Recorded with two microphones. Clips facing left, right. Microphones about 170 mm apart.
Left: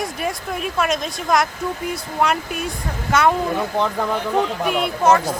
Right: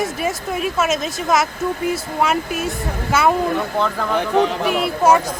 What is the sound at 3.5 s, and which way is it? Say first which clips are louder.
Speech: even; 15° left (ahead or behind).